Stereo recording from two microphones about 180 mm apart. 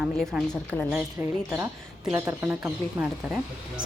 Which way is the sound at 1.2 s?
10° right (ahead or behind).